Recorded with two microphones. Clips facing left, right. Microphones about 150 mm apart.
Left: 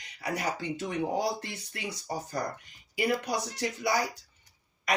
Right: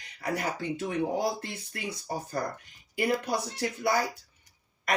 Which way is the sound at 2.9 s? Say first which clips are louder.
Right 1 dB; 55° right (ahead or behind).